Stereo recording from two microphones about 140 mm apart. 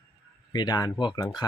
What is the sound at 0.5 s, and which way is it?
Speech, 25° left (ahead or behind).